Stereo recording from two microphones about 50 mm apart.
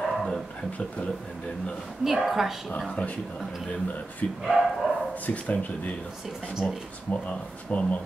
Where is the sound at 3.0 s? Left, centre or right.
Left.